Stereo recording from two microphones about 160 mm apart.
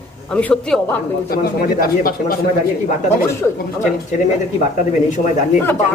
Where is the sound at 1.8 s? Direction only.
65° left (ahead or behind).